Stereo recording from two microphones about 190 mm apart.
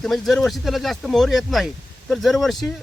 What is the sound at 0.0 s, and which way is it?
Speech, centre (ahead or behind).